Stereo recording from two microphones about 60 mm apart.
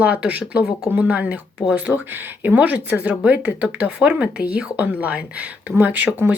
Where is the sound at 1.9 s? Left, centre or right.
Right.